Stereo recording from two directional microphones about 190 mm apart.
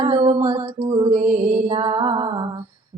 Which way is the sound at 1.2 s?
45° right (ahead or behind).